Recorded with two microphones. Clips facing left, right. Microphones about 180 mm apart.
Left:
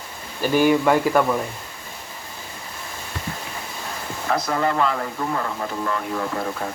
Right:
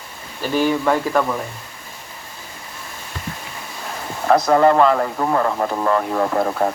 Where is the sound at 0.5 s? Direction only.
10° left (ahead or behind).